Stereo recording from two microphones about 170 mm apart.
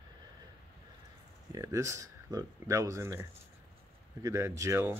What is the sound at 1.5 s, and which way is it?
Speech, 20° right (ahead or behind).